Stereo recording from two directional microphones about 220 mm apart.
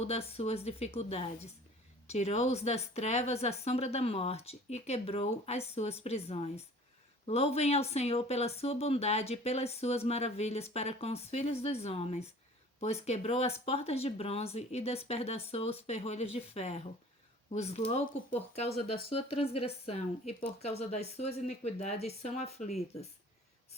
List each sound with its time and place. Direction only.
0.0 s speech: 30° left (ahead or behind)